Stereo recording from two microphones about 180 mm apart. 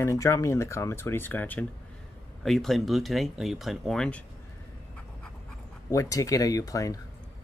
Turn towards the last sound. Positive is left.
turn(degrees=20)  # may be behind; listen again after turning